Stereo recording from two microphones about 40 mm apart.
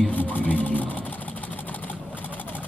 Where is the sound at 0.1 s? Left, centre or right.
Left.